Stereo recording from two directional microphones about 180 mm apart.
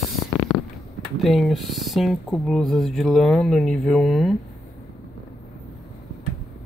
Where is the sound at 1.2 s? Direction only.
Centre (ahead or behind).